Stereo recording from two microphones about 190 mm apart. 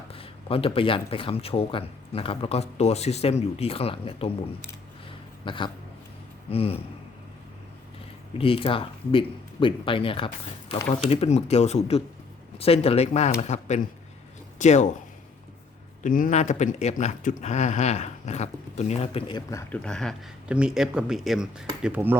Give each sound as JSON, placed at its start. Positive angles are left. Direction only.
{"t": 0.1, "sound": "speech", "side_deg": 30}
{"t": 5.5, "sound": "speech", "side_deg": 25}
{"t": 8.4, "sound": "speech", "side_deg": 30}
{"t": 16.0, "sound": "speech", "side_deg": 45}
{"t": 19.5, "sound": "speech", "side_deg": 15}
{"t": 19.8, "sound": "speech", "side_deg": 5}